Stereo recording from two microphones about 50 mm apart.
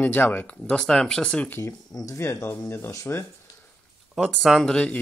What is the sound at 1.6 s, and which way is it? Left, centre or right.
Speech, left.